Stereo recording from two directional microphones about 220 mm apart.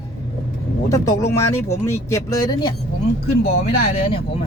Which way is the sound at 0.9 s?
15° left (ahead or behind).